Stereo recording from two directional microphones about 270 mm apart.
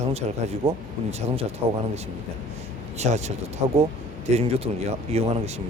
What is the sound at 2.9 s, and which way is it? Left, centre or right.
Speech, right.